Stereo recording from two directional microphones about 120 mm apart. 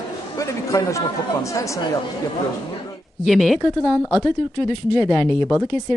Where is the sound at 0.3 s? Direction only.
25° left (ahead or behind).